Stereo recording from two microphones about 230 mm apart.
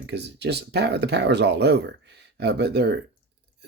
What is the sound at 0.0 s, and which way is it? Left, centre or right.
Speech, right.